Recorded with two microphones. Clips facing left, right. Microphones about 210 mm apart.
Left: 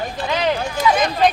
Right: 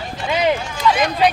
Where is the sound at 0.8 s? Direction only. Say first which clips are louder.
Left 2 dB; 50° left (ahead or behind).